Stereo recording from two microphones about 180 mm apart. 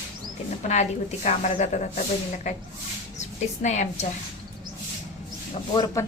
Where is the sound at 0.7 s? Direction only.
40° left (ahead or behind).